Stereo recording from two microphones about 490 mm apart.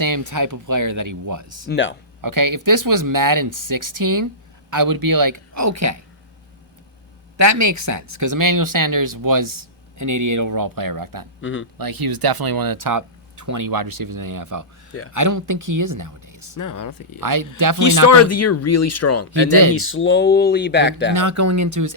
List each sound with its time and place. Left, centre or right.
0.0 s speech: right
1.6 s speech: left
2.2 s speech: right
7.3 s speech: right
11.3 s speech: left
11.8 s speech: right
16.6 s speech: left
17.2 s speech: right
18.1 s speech: left
19.3 s speech: right
19.7 s speech: left
21.1 s speech: right